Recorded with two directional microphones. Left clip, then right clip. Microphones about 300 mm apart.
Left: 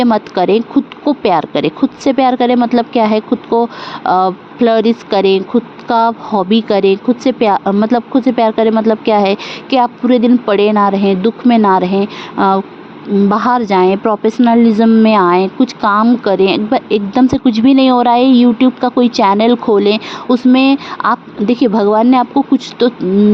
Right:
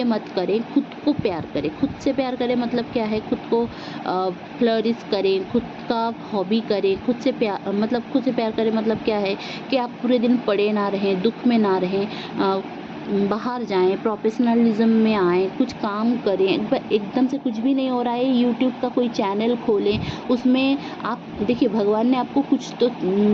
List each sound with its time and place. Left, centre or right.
0.0 s a woman's voice: left